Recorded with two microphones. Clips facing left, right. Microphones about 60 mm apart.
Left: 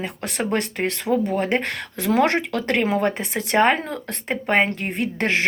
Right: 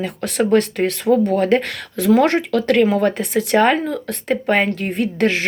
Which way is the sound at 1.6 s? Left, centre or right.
Left.